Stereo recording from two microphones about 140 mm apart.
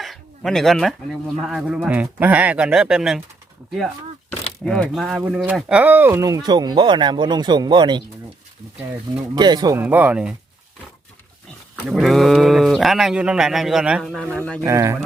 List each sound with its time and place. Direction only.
0.0 s a sound: centre (ahead or behind)
1.5 s speech: 5° right (ahead or behind)
4.6 s speech: 5° left (ahead or behind); by 8.0 s 30° right (ahead or behind)
9.3 s speech: 30° right (ahead or behind)
9.8 s speech: 10° right (ahead or behind)
11.9 s speech: centre (ahead or behind)
14.2 s speech: 10° left (ahead or behind)
14.6 s speech: 20° right (ahead or behind)